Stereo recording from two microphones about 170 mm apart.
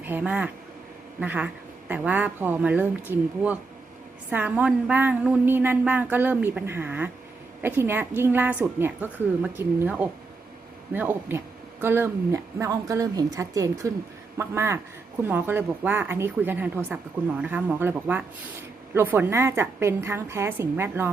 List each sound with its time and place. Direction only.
0.0 s a woman's voice: 10° right (ahead or behind)